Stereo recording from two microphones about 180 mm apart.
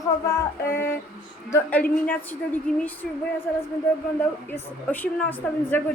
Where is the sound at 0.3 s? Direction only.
15° left (ahead or behind).